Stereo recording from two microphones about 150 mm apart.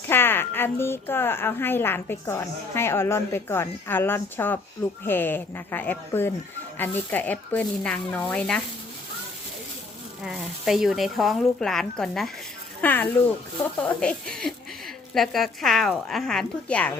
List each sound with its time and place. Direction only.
0.1 s a woman's voice: 15° left (ahead or behind)
10.2 s speech: 5° right (ahead or behind)